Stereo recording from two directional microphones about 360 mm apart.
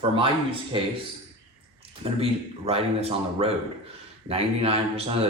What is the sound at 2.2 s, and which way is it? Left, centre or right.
Speech, centre.